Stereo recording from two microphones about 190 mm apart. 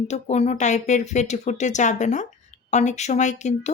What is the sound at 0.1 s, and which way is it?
Speech, 35° left (ahead or behind).